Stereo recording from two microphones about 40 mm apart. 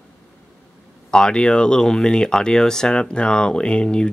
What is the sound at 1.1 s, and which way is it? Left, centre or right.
Speech, left.